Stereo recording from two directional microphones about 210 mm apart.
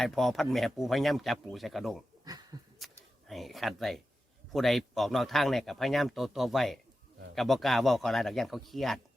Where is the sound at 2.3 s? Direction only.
20° right (ahead or behind).